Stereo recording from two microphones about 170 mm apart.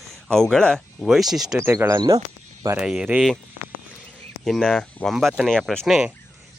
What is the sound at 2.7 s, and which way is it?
Speech, 5° right (ahead or behind).